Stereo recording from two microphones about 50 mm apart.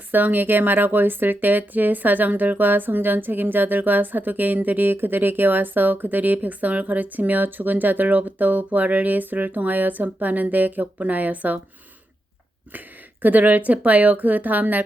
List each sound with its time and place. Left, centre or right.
0.1 s speech: right
13.2 s speech: right